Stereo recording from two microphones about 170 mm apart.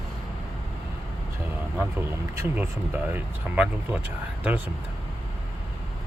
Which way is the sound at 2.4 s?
10° right (ahead or behind).